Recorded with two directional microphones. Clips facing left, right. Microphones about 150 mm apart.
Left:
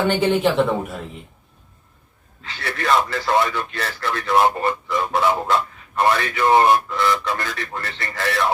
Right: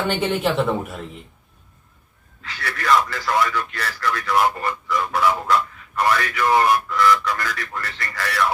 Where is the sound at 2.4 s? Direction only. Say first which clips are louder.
Left 2 dB; 25° left (ahead or behind).